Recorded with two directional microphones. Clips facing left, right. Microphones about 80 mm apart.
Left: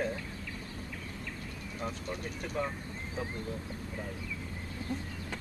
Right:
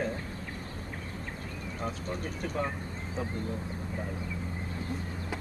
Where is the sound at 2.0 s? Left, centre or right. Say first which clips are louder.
Right 3 dB; centre.